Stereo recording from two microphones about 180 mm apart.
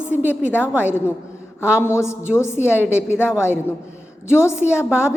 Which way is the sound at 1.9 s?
15° left (ahead or behind).